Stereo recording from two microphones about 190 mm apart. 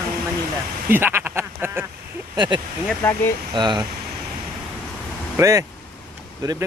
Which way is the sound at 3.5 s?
25° right (ahead or behind).